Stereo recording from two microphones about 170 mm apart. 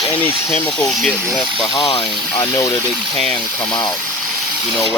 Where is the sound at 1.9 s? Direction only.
30° left (ahead or behind).